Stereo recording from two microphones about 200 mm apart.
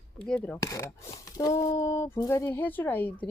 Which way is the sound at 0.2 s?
5° left (ahead or behind).